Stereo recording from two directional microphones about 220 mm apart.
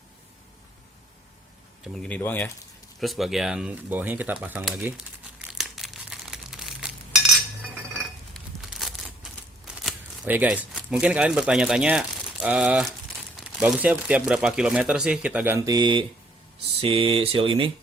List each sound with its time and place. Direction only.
1.8 s speech: 5° left (ahead or behind)
5.5 s crumpling: centre (ahead or behind)
8.3 s crumpling: centre (ahead or behind)
9.8 s speech: 5° right (ahead or behind); by 17.7 s 25° right (ahead or behind)